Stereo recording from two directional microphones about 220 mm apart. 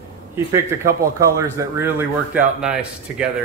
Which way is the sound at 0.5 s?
15° right (ahead or behind).